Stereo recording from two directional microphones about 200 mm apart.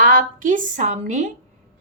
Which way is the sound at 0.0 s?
45° right (ahead or behind).